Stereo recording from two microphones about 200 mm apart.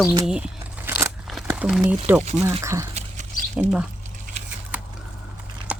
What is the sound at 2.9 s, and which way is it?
Dog, 40° right (ahead or behind).